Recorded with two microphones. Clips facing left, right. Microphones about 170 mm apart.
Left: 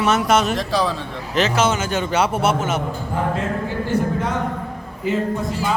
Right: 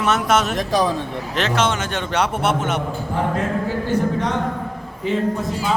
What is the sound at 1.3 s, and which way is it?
A man's voice, centre (ahead or behind).